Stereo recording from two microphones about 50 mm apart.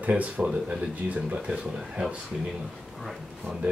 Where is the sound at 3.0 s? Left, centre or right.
Centre.